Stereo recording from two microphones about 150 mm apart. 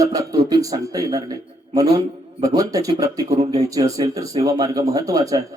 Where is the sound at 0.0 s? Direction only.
25° right (ahead or behind).